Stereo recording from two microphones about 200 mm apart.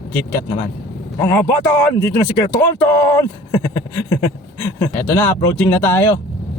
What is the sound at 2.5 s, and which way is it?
Speech, 15° left (ahead or behind).